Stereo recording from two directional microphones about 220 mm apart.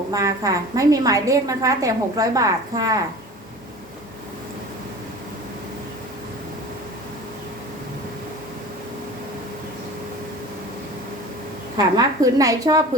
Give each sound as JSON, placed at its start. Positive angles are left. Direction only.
{"t": 0.1, "sound": "a woman's voice", "side_deg": -15}
{"t": 11.9, "sound": "a woman's voice", "side_deg": -15}